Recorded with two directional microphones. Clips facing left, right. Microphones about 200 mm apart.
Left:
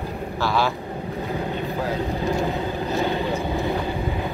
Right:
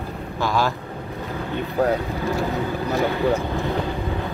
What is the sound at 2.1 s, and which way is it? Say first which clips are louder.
Vehicle: left 1 dB; 15° left (ahead or behind).